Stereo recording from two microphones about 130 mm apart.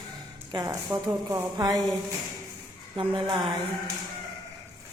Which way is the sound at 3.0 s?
40° right (ahead or behind).